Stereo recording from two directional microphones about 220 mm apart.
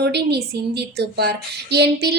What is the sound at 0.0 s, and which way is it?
Speech, 50° right (ahead or behind).